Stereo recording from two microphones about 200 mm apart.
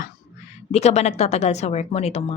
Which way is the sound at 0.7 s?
35° left (ahead or behind).